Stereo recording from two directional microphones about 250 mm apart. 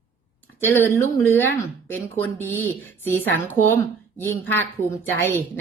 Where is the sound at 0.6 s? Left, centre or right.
Centre.